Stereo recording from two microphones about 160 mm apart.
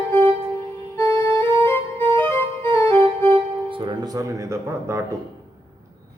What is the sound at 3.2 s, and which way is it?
Music, 35° right (ahead or behind).